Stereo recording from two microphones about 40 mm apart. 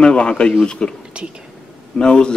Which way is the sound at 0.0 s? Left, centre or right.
Left.